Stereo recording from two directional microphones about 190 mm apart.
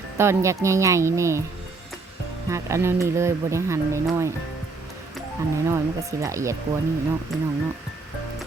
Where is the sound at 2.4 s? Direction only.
15° right (ahead or behind).